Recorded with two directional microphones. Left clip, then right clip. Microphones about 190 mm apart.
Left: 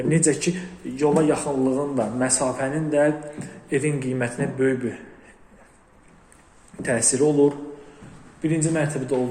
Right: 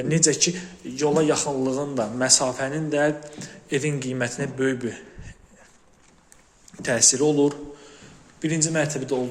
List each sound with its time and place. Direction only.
0.1 s a man's voice: 25° right (ahead or behind)
6.8 s speech: 25° right (ahead or behind)